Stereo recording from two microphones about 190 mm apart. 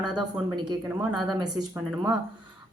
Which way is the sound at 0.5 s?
25° right (ahead or behind).